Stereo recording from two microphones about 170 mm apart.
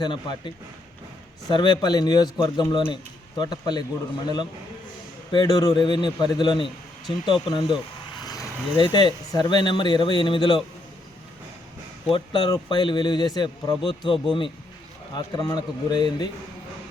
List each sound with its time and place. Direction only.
0.0 s a man's voice: 25° left (ahead or behind)
5.3 s a man's voice: 25° left (ahead or behind)
12.1 s a man's voice: 30° left (ahead or behind)